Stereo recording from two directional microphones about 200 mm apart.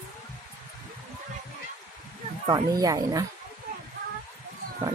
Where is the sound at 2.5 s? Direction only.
20° right (ahead or behind).